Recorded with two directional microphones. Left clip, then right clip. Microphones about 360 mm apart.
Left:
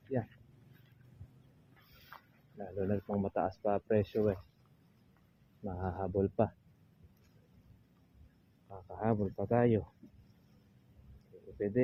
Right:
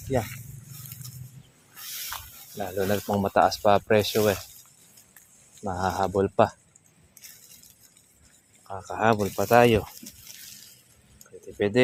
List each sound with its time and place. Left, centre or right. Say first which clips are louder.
2.6 s speech: right 10 dB; centre
5.6 s speech: right 13 dB; centre
8.7 s speech: right 12 dB; centre